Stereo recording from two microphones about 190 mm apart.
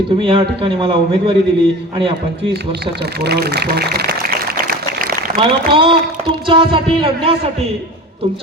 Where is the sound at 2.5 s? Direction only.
60° right (ahead or behind).